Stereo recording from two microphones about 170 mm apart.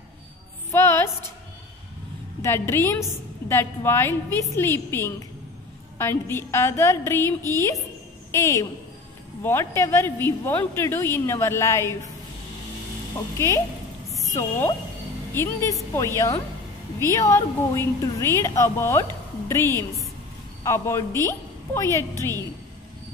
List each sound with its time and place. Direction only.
0.7 s music: 15° left (ahead or behind)
2.4 s a woman's voice: 15° left (ahead or behind)
14.1 s a woman's voice: 20° left (ahead or behind)